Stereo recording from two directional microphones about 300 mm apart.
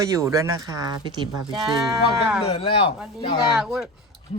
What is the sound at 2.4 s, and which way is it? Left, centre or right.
Speech, centre.